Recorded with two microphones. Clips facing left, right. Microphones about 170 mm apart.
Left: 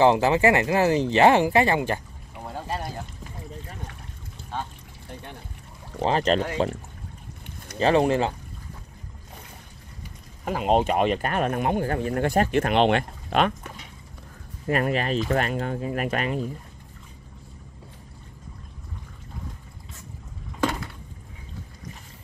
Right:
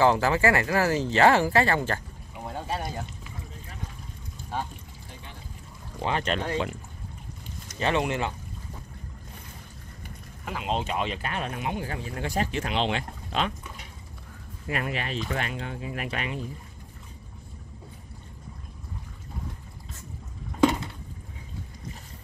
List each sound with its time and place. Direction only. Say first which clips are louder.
0.0 s speech: left 3 dB; 20° left (ahead or behind)
2.3 s boat: even; centre (ahead or behind)
5.9 s speech: left 6 dB; 35° left (ahead or behind)
7.8 s speech: left 6 dB; 35° left (ahead or behind)
10.4 s speech: left 8 dB; 45° left (ahead or behind)
14.7 s speech: left 7 dB; 40° left (ahead or behind)